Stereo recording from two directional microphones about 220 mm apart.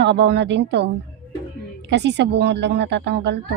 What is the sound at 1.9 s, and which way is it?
A woman's voice, 50° right (ahead or behind).